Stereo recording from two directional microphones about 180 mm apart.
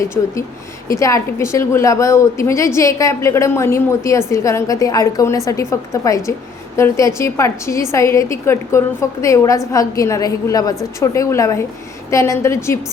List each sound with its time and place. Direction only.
0.0 s a woman's voice: 15° left (ahead or behind)